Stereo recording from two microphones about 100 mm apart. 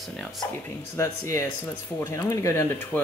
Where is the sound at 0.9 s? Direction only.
30° left (ahead or behind).